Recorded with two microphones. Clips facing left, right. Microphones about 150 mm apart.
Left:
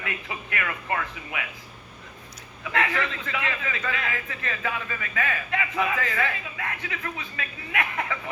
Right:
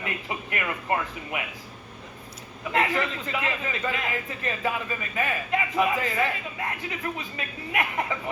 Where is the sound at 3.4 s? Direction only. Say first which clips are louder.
Right 2 dB; 30° right (ahead or behind).